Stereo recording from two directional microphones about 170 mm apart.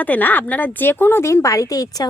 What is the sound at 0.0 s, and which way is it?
Speech, 10° left (ahead or behind).